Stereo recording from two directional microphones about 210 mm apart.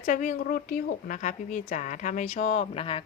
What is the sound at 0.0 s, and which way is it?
A woman's voice, 40° left (ahead or behind).